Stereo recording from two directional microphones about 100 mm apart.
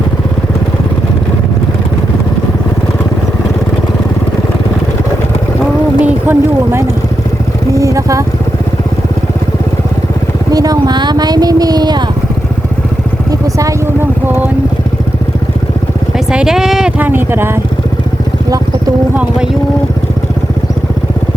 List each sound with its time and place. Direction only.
6.0 s a sound: 20° right (ahead or behind)
7.7 s vehicle: 35° right (ahead or behind)
10.5 s speech: 40° right (ahead or behind)
13.6 s vehicle: 35° right (ahead or behind)
16.1 s a sound: 5° right (ahead or behind)
17.0 s speech: 20° right (ahead or behind)